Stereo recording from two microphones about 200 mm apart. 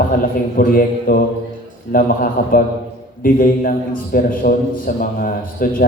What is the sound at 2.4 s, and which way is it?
A man's voice, 45° left (ahead or behind).